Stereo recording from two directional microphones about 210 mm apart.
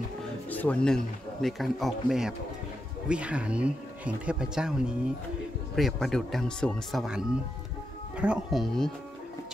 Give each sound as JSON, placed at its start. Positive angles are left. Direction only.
{"t": 0.5, "sound": "speech", "side_deg": 5}